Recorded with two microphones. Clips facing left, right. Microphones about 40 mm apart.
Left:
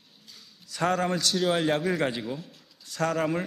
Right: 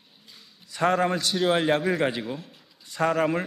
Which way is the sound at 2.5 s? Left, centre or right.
Centre.